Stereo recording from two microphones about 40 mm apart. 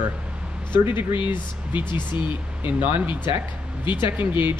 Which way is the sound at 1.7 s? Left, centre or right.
Right.